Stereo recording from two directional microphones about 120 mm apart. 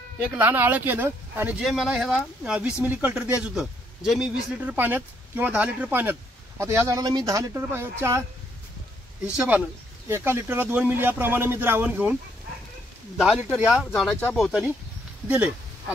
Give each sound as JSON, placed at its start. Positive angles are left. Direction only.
{"t": 0.3, "sound": "speech", "side_deg": -15}
{"t": 1.6, "sound": "speech", "side_deg": -5}
{"t": 6.6, "sound": "speech", "side_deg": -30}
{"t": 9.2, "sound": "speech", "side_deg": -10}
{"t": 13.2, "sound": "speech", "side_deg": -5}
{"t": 15.2, "sound": "speech", "side_deg": -10}